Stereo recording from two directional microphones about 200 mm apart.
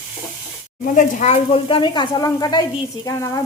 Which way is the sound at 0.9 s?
40° left (ahead or behind).